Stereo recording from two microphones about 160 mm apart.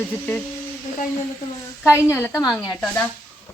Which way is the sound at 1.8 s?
20° left (ahead or behind).